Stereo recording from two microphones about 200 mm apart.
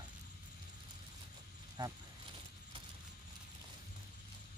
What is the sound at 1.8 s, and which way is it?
Speech, 20° right (ahead or behind).